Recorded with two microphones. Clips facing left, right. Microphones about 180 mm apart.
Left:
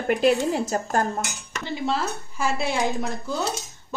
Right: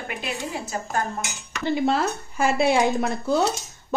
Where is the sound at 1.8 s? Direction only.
60° right (ahead or behind).